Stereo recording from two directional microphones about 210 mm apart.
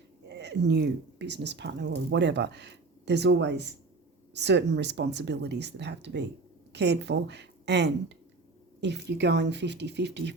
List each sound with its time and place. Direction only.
0.3 s speech: 55° right (ahead or behind)